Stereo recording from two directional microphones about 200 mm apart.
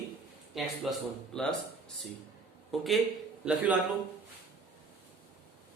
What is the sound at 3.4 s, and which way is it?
Speech, 5° right (ahead or behind).